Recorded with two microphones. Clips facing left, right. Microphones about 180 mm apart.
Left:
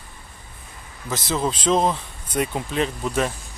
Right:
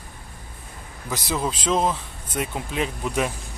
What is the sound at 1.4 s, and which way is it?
Speech, 5° right (ahead or behind).